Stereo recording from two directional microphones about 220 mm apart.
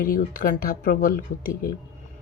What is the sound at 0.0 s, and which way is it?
Speech, 40° left (ahead or behind).